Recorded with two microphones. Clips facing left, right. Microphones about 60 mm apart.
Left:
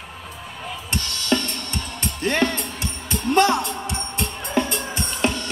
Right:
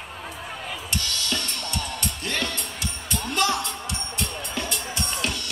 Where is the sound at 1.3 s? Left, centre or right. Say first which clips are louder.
Left 10 dB; left.